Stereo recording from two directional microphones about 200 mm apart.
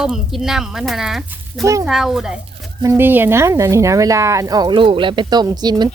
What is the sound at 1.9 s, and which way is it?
Speech, centre (ahead or behind).